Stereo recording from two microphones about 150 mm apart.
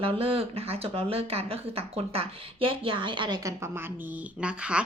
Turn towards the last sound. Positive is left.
turn(degrees=-5)  # may be behind; listen again after turning